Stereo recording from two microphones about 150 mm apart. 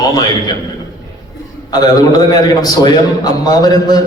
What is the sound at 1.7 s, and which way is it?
A man's voice, 25° left (ahead or behind).